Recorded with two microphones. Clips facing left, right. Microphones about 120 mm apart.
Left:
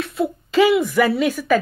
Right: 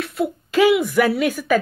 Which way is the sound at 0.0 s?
Centre (ahead or behind).